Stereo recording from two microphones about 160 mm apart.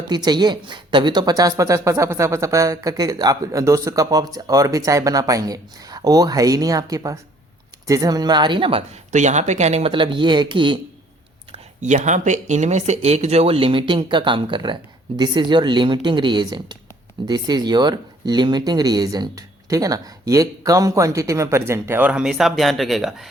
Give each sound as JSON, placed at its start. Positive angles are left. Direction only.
{"t": 0.1, "sound": "a woman's voice", "side_deg": -25}
{"t": 9.1, "sound": "speech", "side_deg": -45}
{"t": 11.5, "sound": "a woman's voice", "side_deg": -50}